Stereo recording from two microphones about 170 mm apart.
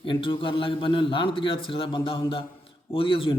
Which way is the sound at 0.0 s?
30° left (ahead or behind).